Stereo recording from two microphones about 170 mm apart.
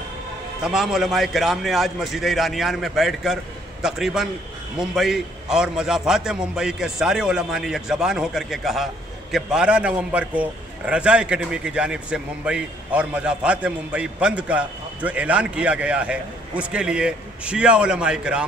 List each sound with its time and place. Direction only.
0.7 s a man's voice: centre (ahead or behind)